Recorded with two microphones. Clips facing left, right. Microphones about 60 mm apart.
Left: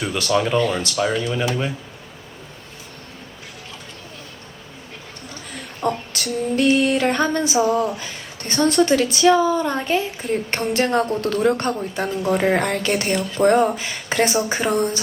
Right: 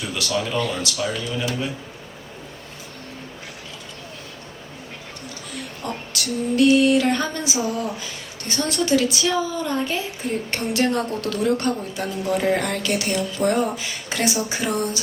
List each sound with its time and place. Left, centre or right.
0.2 s female singing: left
5.8 s female singing: left